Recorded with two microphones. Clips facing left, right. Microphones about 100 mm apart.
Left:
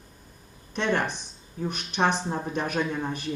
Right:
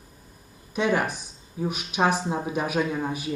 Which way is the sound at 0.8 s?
10° right (ahead or behind).